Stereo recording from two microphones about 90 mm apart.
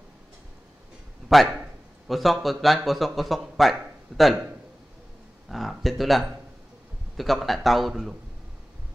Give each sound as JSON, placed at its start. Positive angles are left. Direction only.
{"t": 1.3, "sound": "a man's voice", "side_deg": 0}
{"t": 5.5, "sound": "a man's voice", "side_deg": 0}